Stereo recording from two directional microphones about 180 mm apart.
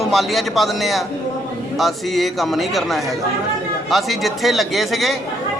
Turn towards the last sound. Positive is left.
turn(degrees=0)  # may be behind; listen again after turning